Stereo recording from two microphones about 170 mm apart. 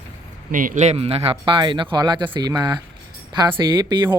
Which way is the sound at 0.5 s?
50° right (ahead or behind).